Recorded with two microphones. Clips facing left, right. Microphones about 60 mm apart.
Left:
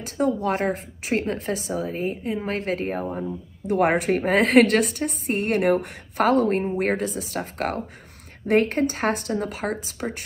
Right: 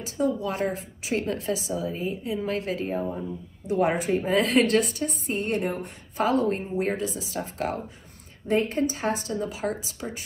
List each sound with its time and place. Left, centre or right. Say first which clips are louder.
0.0 s a woman's voice: left 3 dB; left
3.1 s speech: left 3 dB; left
3.6 s a woman's voice: left 4 dB; left